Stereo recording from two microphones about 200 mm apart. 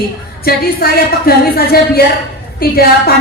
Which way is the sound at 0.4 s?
50° left (ahead or behind).